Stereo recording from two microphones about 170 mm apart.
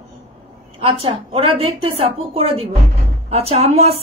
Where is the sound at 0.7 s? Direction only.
35° right (ahead or behind).